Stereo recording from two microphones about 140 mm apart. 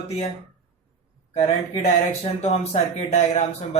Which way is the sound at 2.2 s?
50° left (ahead or behind).